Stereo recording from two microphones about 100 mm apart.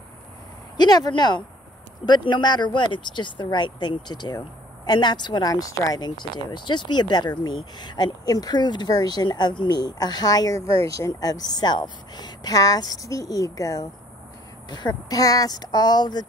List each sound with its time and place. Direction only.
0.7 s speech: 45° left (ahead or behind)